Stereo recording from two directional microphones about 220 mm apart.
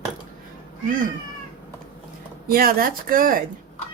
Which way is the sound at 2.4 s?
40° right (ahead or behind).